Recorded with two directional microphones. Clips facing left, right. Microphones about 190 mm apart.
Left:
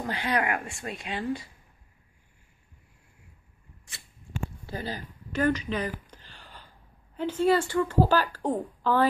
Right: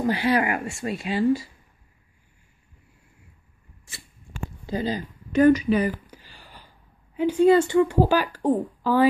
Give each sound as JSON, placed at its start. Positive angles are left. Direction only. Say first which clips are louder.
{"t": 0.0, "sound": "speech", "louder": "right 7 dB", "side_deg": -10}
{"t": 4.6, "sound": "a sound", "louder": "right 13 dB", "side_deg": -15}
{"t": 7.2, "sound": "speech", "louder": "right 7 dB", "side_deg": -15}